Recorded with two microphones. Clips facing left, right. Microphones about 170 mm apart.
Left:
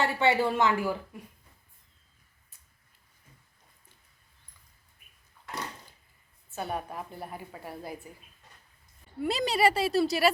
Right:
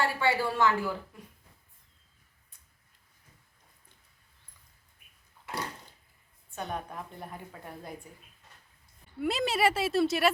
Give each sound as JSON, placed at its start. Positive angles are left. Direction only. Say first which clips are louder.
{"t": 0.0, "sound": "a woman's voice", "louder": "left 3 dB", "side_deg": 20}
{"t": 6.5, "sound": "a woman's voice", "louder": "left 2 dB", "side_deg": 5}
{"t": 9.2, "sound": "speech", "louder": "left 2 dB", "side_deg": 0}